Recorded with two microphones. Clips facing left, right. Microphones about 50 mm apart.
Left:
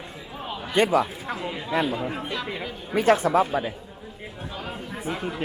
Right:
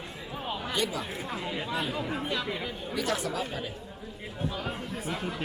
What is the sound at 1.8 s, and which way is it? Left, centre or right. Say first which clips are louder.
Speech: left 5 dB; centre.